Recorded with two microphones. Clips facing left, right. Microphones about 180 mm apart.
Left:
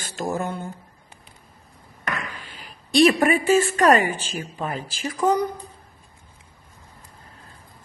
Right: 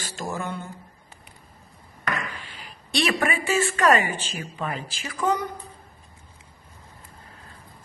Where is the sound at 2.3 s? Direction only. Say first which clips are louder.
Even; 45° left (ahead or behind).